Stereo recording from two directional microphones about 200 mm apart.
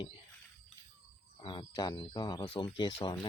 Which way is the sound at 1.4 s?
25° left (ahead or behind).